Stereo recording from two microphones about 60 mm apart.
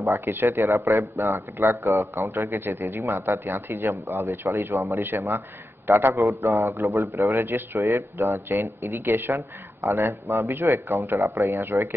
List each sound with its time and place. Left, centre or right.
0.2 s speech: right
2.6 s a man's voice: right
5.9 s speech: right
6.1 s speech: right